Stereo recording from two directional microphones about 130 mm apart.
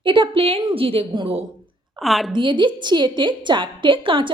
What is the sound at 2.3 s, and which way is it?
A woman's voice, 40° right (ahead or behind).